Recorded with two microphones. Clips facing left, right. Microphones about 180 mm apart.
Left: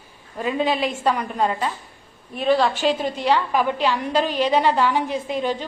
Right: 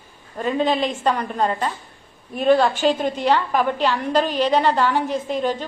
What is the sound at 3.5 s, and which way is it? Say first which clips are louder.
Speech: right 1 dB; 40° right (ahead or behind).